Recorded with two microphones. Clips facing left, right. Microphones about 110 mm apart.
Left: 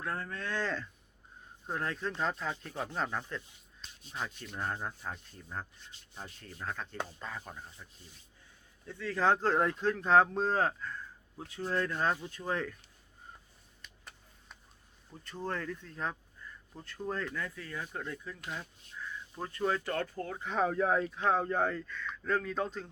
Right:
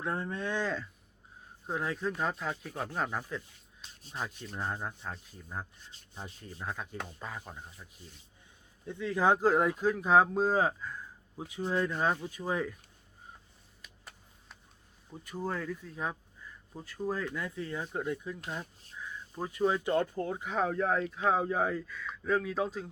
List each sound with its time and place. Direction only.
0.0 s speech: 20° right (ahead or behind); by 7.9 s 5° right (ahead or behind)
8.9 s speech: 15° right (ahead or behind)
13.8 s a sound: 5° right (ahead or behind)
15.1 s speech: 10° right (ahead or behind)
20.4 s speech: centre (ahead or behind)